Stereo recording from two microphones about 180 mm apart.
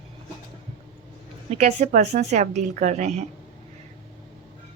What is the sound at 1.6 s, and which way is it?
Speech, 40° right (ahead or behind).